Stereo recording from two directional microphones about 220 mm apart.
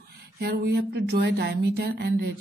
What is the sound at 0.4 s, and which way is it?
Speech, 50° right (ahead or behind).